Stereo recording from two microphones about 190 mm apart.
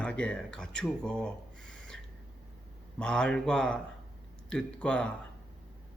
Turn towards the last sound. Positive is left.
turn(degrees=5)  # may be behind; listen again after turning